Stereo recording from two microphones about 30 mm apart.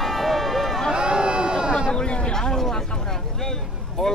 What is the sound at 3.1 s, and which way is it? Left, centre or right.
Vehicle, centre.